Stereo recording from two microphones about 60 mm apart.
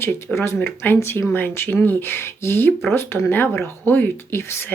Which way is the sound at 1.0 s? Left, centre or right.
Left.